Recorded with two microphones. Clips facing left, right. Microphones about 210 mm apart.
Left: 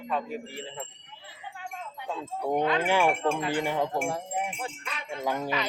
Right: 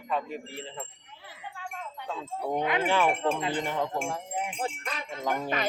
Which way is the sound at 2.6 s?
15° right (ahead or behind).